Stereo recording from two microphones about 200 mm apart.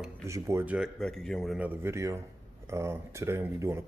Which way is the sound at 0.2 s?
15° right (ahead or behind).